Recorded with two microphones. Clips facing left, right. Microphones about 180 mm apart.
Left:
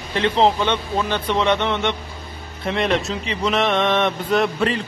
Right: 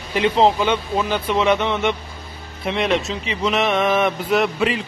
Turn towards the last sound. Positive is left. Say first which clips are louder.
# even
turn(degrees=0)  # may be behind; listen again after turning